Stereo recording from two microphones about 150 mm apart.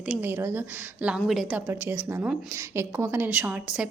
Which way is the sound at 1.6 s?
15° right (ahead or behind).